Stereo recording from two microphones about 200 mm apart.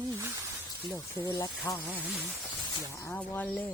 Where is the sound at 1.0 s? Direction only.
20° left (ahead or behind).